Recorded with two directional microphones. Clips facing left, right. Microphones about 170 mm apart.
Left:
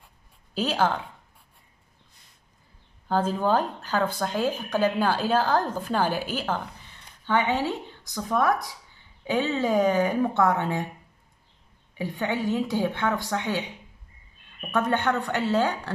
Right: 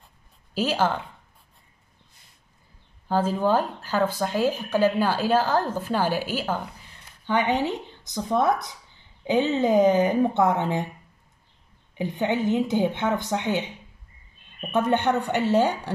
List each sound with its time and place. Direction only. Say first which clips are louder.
0.6 s speech: right 1 dB; 5° right (ahead or behind)
3.1 s speech: right 1 dB; 10° right (ahead or behind)
12.0 s speech: right 3 dB; 20° right (ahead or behind)
14.7 s speech: right 2 dB; 20° right (ahead or behind)